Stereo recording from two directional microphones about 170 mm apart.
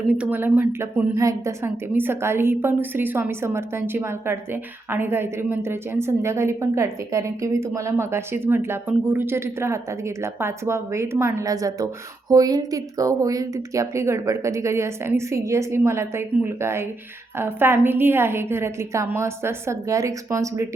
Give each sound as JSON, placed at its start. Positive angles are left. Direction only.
{"t": 0.1, "sound": "a woman's voice", "side_deg": -10}